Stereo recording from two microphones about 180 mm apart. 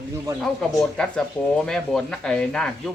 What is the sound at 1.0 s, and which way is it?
Speech, 5° left (ahead or behind).